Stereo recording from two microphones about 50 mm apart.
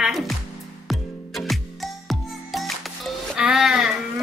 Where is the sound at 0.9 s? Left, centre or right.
Centre.